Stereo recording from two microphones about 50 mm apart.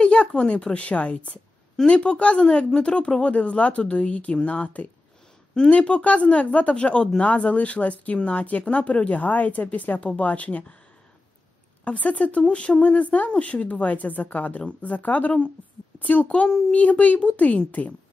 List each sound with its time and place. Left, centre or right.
0.0 s speech: left
11.8 s speech: left